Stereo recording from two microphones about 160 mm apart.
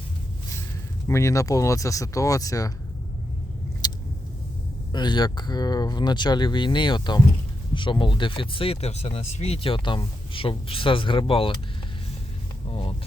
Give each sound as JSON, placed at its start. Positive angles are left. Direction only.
{"t": 1.0, "sound": "speech", "side_deg": 20}
{"t": 3.8, "sound": "vehicle", "side_deg": 25}
{"t": 4.9, "sound": "speech", "side_deg": 30}